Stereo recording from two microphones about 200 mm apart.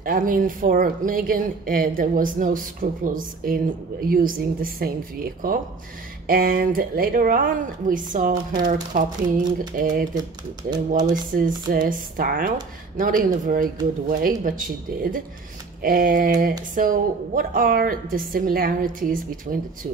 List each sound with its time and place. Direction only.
0.0 s speech: 45° right (ahead or behind)
11.3 s speech: 45° right (ahead or behind)